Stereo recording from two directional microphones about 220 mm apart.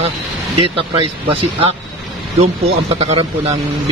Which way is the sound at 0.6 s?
25° right (ahead or behind).